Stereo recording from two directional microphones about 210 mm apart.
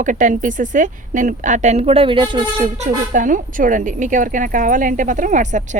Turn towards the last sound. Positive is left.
turn(degrees=-35)  # may be behind; listen again after turning